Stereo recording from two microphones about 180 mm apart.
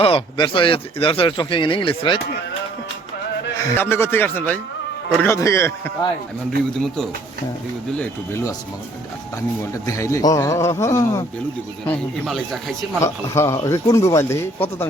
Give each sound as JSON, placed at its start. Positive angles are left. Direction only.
{"t": 0.0, "sound": "speech", "side_deg": 30}
{"t": 3.7, "sound": "speech", "side_deg": 10}
{"t": 6.7, "sound": "speech", "side_deg": 0}
{"t": 9.8, "sound": "speech", "side_deg": 15}
{"t": 11.9, "sound": "speech", "side_deg": 0}
{"t": 13.0, "sound": "speech", "side_deg": 15}